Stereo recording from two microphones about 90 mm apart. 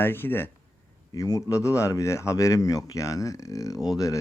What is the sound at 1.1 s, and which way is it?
Speech, 40° left (ahead or behind).